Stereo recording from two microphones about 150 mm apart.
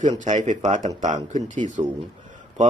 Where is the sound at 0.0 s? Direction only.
55° right (ahead or behind).